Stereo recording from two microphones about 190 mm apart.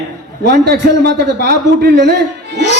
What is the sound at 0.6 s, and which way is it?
A man's voice, 55° right (ahead or behind).